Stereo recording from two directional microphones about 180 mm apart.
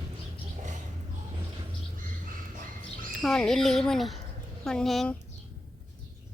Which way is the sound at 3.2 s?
5° left (ahead or behind).